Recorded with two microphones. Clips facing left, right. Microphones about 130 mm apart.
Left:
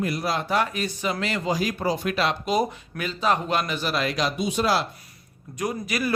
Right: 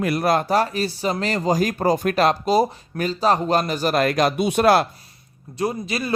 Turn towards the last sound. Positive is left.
turn(degrees=-30)  # may be behind; listen again after turning